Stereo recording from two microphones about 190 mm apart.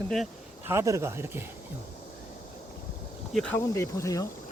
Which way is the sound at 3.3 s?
5° left (ahead or behind).